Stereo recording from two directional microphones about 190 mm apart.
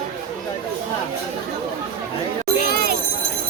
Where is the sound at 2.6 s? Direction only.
55° right (ahead or behind).